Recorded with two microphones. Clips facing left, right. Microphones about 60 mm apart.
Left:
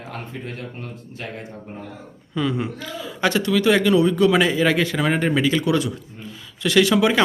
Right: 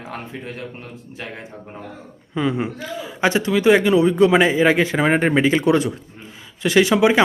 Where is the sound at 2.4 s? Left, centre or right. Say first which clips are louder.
Right 2 dB; right.